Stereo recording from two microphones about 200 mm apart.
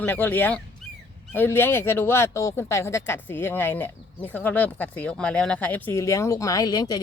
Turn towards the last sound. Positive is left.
turn(degrees=20)  # may be behind; listen again after turning